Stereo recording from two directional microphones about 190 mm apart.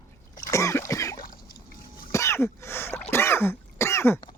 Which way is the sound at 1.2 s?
50° left (ahead or behind).